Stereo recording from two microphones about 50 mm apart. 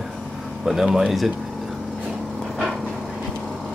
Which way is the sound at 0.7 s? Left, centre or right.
Centre.